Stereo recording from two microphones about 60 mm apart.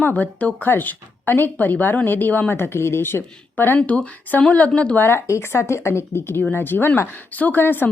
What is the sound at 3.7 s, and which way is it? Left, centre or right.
A woman's voice, left.